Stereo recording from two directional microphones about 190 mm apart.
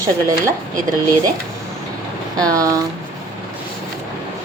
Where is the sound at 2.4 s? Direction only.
20° right (ahead or behind).